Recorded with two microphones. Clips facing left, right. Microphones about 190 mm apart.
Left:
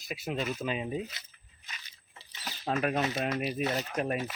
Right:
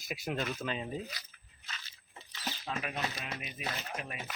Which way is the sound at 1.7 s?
15° left (ahead or behind).